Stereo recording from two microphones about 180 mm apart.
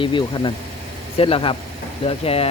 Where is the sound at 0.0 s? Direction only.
25° left (ahead or behind).